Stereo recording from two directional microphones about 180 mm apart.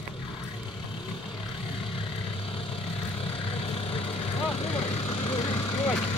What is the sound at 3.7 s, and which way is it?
Vehicle, 30° left (ahead or behind).